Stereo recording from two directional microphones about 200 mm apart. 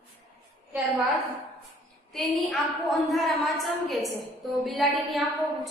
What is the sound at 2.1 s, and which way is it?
A woman's voice, centre (ahead or behind).